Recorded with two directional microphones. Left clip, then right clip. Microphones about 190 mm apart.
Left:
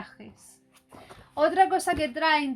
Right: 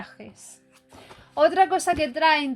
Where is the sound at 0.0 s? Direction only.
45° right (ahead or behind).